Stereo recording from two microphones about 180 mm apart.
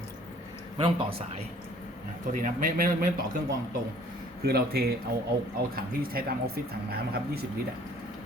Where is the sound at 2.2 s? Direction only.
45° right (ahead or behind).